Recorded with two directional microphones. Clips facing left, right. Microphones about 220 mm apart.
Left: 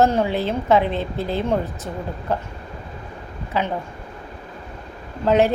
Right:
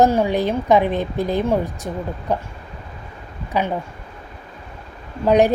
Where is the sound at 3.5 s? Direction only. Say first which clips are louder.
Right 2 dB; 15° right (ahead or behind).